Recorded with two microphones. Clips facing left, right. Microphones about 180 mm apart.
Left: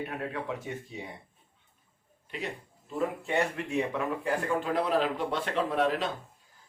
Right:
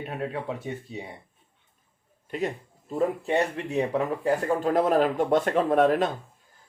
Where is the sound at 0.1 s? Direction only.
30° right (ahead or behind).